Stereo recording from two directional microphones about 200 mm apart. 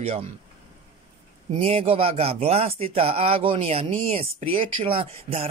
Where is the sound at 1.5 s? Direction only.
30° right (ahead or behind).